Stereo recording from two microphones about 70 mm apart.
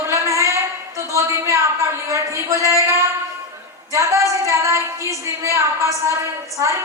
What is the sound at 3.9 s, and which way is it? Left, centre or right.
Female singing, right.